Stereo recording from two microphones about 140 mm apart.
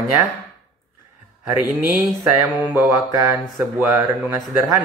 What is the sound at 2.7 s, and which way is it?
Speech, 15° right (ahead or behind).